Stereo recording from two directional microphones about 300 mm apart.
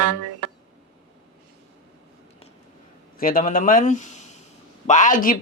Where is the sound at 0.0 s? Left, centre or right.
Right.